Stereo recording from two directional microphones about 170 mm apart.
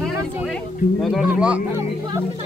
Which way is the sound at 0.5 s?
Centre (ahead or behind).